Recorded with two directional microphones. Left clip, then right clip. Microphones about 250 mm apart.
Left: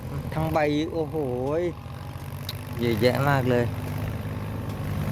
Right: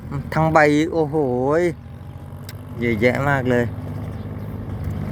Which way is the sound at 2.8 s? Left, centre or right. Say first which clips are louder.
Right 4 dB; centre.